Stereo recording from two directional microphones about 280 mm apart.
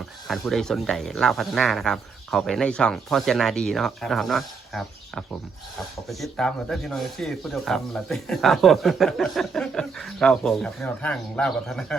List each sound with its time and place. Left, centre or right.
0.3 s speech: centre